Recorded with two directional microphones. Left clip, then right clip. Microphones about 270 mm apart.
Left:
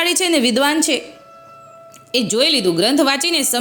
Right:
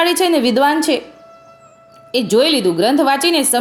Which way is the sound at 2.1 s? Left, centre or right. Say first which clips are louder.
Right 2 dB; centre.